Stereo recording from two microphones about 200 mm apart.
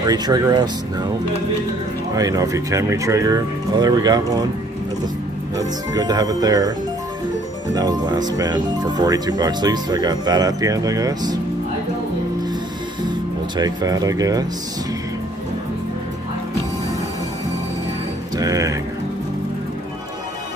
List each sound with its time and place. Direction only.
0.0 s speech: 20° right (ahead or behind)
2.1 s speech: 15° right (ahead or behind)
5.9 s speech: 20° right (ahead or behind)
7.7 s speech: 20° right (ahead or behind)
13.6 s speech: 20° right (ahead or behind)
18.4 s music: 15° right (ahead or behind)